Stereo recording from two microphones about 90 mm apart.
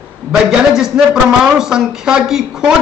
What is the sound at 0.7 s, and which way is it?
Speech, 5° right (ahead or behind).